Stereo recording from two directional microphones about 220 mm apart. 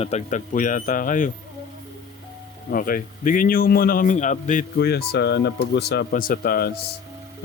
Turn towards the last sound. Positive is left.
turn(degrees=45)  # may be behind; listen again after turning